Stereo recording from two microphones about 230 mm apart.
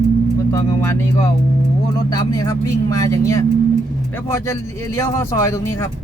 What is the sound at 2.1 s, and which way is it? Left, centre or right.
Speech, centre.